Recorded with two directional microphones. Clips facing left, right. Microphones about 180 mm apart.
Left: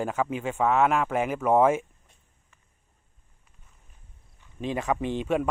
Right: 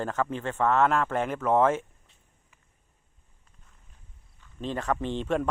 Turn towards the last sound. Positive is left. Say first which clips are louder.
# left 2 dB
turn(degrees=5)  # may be behind; listen again after turning